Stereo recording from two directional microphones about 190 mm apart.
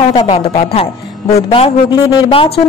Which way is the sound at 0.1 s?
30° left (ahead or behind).